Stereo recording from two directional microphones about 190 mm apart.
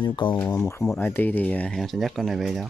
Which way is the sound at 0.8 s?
5° left (ahead or behind).